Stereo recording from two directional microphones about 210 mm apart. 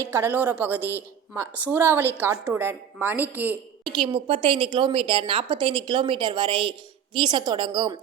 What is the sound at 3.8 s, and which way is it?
A woman's voice, 20° right (ahead or behind).